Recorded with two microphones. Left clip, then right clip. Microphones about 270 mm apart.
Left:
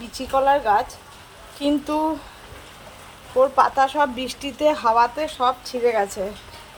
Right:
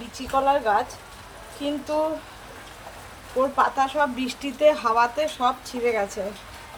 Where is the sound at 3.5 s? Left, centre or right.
Centre.